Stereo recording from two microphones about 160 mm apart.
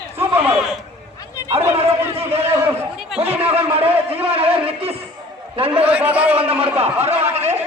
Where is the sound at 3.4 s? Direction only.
35° right (ahead or behind).